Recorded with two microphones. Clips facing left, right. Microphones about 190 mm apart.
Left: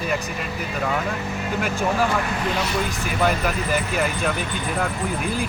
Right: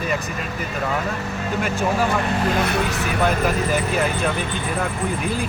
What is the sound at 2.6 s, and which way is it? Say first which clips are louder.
Speech: right 3 dB; 60° right (ahead or behind).